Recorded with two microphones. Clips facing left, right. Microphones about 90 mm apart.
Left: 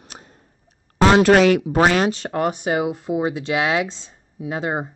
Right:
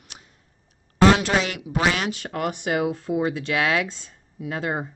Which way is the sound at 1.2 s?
60° left (ahead or behind).